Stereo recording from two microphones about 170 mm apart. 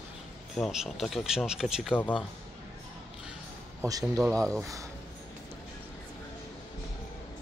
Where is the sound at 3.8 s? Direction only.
15° right (ahead or behind).